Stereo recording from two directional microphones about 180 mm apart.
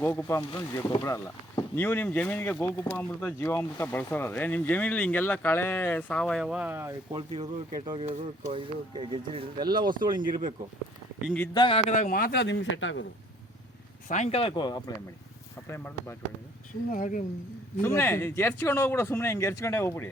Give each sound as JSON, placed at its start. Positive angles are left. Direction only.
{"t": 0.0, "sound": "speech", "side_deg": 15}
{"t": 7.1, "sound": "speech", "side_deg": -30}
{"t": 11.5, "sound": "a man's voice", "side_deg": 25}
{"t": 11.9, "sound": "a man's voice", "side_deg": 45}
{"t": 14.1, "sound": "speech", "side_deg": 40}
{"t": 15.6, "sound": "speech", "side_deg": 15}
{"t": 16.9, "sound": "speech", "side_deg": 50}
{"t": 17.8, "sound": "speech", "side_deg": 15}